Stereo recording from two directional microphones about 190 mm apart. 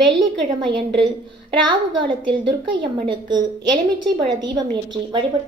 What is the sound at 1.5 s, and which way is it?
A woman's voice, 25° right (ahead or behind).